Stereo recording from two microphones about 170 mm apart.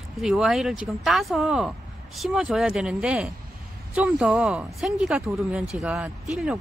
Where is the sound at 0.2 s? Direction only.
Centre (ahead or behind).